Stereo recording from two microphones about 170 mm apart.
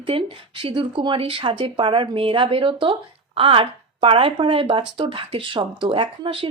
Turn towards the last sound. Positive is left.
turn(degrees=-30)  # may be behind; listen again after turning